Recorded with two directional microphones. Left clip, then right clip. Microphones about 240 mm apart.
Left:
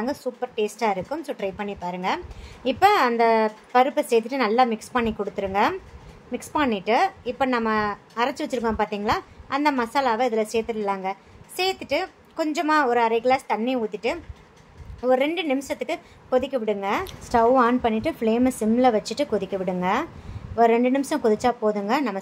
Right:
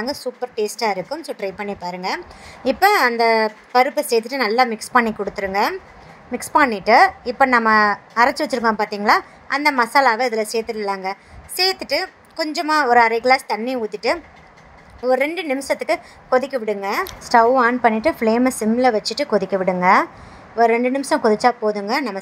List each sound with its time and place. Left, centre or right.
0.0 s a woman's voice: centre